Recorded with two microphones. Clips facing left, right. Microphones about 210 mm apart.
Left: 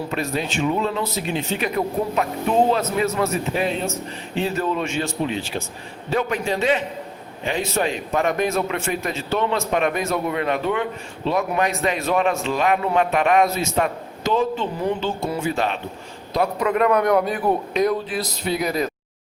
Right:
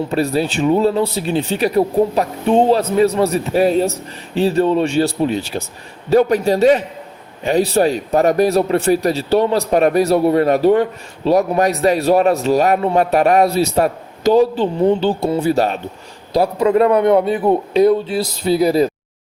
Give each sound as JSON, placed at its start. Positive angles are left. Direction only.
{"t": 0.1, "sound": "a man's voice", "side_deg": -35}